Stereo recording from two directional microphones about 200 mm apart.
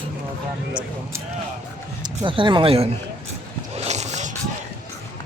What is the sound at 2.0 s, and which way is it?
Speech, 25° right (ahead or behind).